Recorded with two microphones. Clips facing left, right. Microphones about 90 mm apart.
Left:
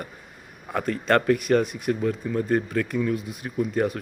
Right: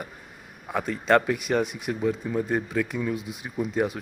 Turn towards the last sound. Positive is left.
turn(degrees=-15)  # may be behind; listen again after turning